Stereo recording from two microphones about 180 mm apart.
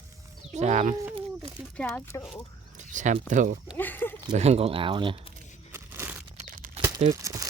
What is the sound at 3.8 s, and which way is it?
Speech, 10° left (ahead or behind).